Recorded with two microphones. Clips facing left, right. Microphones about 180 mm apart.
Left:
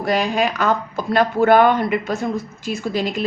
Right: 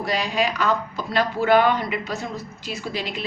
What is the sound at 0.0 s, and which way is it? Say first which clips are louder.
A woman's voice: left 4 dB; 50° left (ahead or behind).